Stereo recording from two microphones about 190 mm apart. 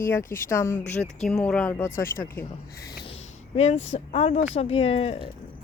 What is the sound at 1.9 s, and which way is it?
Speech, 50° left (ahead or behind).